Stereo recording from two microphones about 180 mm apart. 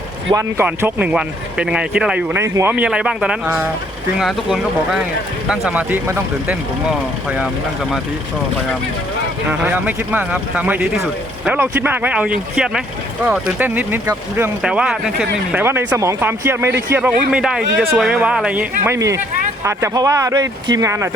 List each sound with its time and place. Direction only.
0.3 s speech: 15° right (ahead or behind)
9.5 s speech: 10° right (ahead or behind)